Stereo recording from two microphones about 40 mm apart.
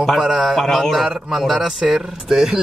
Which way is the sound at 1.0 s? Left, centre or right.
Centre.